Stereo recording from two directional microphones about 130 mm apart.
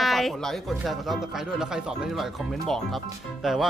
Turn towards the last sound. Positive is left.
turn(degrees=0)  # may be behind; listen again after turning